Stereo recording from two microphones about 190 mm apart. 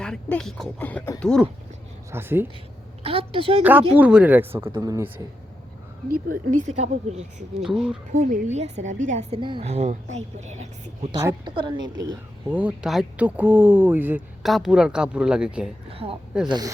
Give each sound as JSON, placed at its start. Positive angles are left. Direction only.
{"t": 0.0, "sound": "speech", "side_deg": 5}
{"t": 2.0, "sound": "speech", "side_deg": -10}
{"t": 3.0, "sound": "a woman's voice", "side_deg": -30}
{"t": 3.6, "sound": "speech", "side_deg": -10}
{"t": 6.1, "sound": "a woman's voice", "side_deg": -50}
{"t": 7.6, "sound": "speech", "side_deg": 0}
{"t": 8.1, "sound": "a woman's voice", "side_deg": -40}
{"t": 9.4, "sound": "a woman's voice", "side_deg": -25}
{"t": 11.1, "sound": "a woman's voice", "side_deg": -20}
{"t": 12.5, "sound": "speech", "side_deg": -10}
{"t": 15.9, "sound": "a woman's voice", "side_deg": -30}
{"t": 16.5, "sound": "a woman's voice", "side_deg": -20}